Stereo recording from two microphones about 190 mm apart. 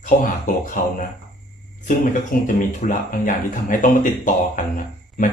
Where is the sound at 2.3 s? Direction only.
45° left (ahead or behind).